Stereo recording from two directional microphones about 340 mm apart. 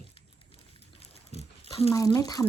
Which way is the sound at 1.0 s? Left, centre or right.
Centre.